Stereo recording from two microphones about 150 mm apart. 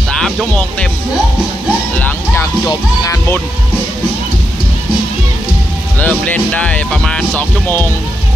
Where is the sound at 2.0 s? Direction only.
10° left (ahead or behind).